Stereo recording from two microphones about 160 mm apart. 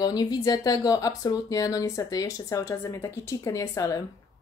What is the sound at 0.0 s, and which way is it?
Speech, 25° left (ahead or behind).